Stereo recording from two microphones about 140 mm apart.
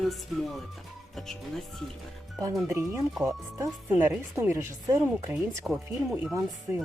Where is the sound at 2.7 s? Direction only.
20° right (ahead or behind).